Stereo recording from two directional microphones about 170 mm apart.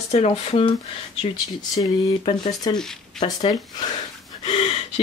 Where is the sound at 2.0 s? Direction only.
25° left (ahead or behind).